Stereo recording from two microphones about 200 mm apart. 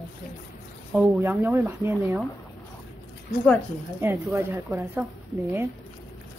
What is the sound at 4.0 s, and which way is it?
A woman's voice, 15° right (ahead or behind).